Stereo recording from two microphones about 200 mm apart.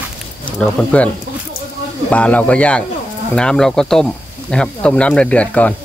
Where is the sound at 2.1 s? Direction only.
5° left (ahead or behind).